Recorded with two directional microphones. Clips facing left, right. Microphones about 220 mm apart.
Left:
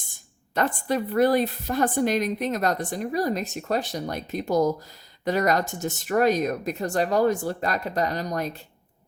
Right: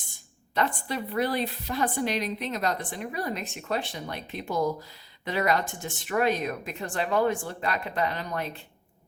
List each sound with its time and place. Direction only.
0.5 s a woman's voice: 45° left (ahead or behind)